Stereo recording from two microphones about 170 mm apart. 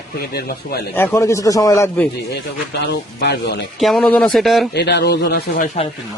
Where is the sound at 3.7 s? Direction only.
Centre (ahead or behind).